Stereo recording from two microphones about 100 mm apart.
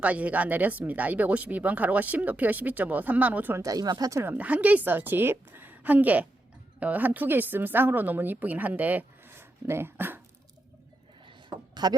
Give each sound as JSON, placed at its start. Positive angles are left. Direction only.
{"t": 0.0, "sound": "speech", "side_deg": -15}
{"t": 3.6, "sound": "speech", "side_deg": -40}
{"t": 4.2, "sound": "a woman's voice", "side_deg": -20}
{"t": 11.3, "sound": "a sound", "side_deg": -50}